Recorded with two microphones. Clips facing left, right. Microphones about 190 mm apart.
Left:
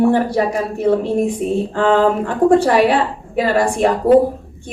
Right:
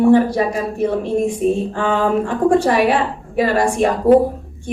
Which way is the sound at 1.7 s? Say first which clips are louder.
Left 3 dB; 60° left (ahead or behind).